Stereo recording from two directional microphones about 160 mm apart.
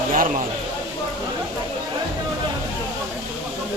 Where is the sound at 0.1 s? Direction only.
55° right (ahead or behind).